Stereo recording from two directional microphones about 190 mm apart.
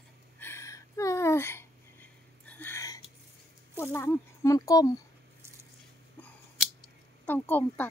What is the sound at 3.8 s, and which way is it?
Speech, 15° left (ahead or behind).